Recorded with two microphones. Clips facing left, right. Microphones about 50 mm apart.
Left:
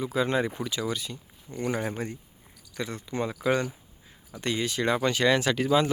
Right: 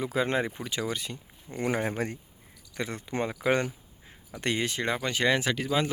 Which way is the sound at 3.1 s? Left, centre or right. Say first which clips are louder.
Even; right.